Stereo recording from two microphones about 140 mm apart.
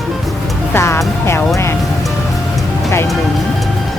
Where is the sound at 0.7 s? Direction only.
20° left (ahead or behind).